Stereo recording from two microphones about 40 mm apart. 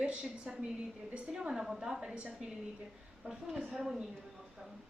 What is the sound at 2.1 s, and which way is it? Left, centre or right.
Speech, right.